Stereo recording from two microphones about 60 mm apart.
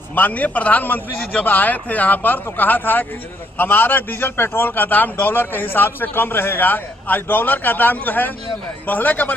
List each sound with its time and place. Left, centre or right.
0.1 s a man's voice: left